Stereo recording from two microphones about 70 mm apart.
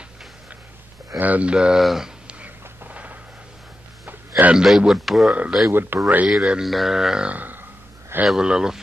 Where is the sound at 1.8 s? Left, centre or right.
Centre.